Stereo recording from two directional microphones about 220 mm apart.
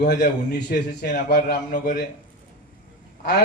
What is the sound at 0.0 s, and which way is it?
A man's voice, 45° left (ahead or behind).